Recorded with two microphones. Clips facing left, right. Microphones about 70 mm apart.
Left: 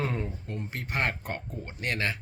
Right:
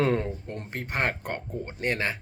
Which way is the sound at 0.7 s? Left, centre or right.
Right.